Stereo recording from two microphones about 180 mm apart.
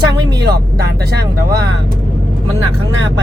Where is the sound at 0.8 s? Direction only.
60° right (ahead or behind).